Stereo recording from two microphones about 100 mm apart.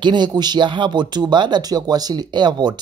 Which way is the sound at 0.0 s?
50° right (ahead or behind).